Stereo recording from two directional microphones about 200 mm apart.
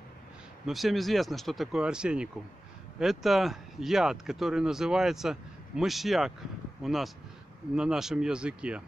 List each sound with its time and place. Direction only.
0.7 s speech: centre (ahead or behind)